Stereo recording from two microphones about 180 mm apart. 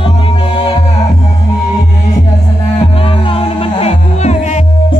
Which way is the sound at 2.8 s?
30° left (ahead or behind).